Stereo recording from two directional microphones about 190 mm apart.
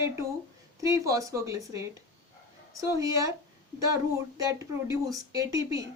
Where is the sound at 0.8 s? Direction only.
15° right (ahead or behind).